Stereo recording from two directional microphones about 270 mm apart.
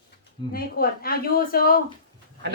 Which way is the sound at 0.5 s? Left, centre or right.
Left.